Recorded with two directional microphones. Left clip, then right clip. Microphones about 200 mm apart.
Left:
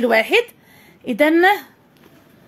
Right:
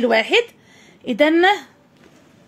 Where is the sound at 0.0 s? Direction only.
5° left (ahead or behind).